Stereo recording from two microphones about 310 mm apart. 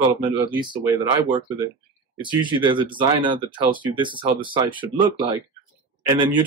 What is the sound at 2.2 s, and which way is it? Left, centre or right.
Speech, centre.